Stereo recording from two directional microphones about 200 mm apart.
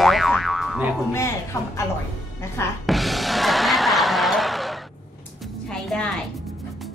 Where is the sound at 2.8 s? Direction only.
Centre (ahead or behind).